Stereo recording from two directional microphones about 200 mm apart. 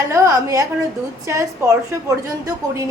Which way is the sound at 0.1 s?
15° right (ahead or behind).